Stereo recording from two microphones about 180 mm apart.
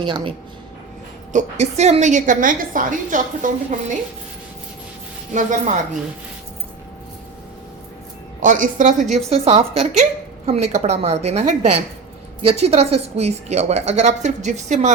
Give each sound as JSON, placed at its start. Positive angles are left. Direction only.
{"t": 0.0, "sound": "speech", "side_deg": -25}
{"t": 1.3, "sound": "a woman's voice", "side_deg": -40}
{"t": 5.3, "sound": "a woman's voice", "side_deg": -45}
{"t": 8.4, "sound": "a woman's voice", "side_deg": -45}
{"t": 9.1, "sound": "a woman's voice", "side_deg": -35}